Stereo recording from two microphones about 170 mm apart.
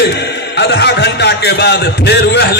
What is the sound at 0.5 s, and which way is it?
A man's voice, 90° left.